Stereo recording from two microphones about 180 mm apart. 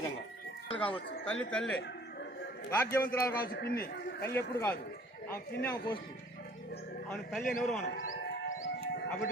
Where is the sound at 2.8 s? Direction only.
10° left (ahead or behind).